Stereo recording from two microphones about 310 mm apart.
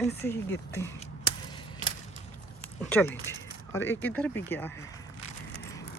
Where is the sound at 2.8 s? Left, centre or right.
Centre.